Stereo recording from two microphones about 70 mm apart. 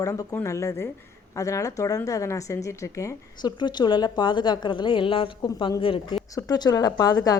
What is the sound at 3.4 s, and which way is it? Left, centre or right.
A woman's voice, left.